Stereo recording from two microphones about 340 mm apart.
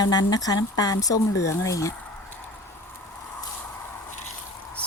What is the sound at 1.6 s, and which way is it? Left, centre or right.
Speech, centre.